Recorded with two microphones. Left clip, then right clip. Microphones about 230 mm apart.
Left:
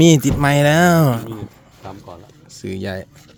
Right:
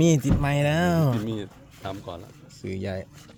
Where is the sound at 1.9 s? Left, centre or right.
Right.